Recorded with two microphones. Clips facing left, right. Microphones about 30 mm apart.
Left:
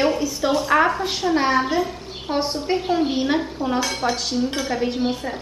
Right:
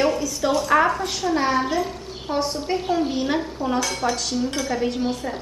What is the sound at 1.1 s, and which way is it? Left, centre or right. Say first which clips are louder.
A woman's voice: left 2 dB; left.